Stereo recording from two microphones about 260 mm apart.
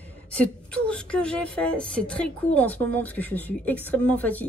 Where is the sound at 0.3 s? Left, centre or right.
Centre.